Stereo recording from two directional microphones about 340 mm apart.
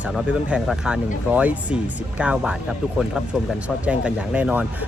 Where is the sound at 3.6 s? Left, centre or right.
Centre.